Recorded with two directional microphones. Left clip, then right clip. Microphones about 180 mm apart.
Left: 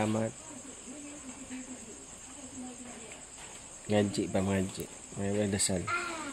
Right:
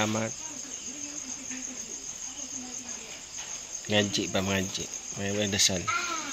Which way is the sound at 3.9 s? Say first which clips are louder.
Right 3 dB; 5° left (ahead or behind).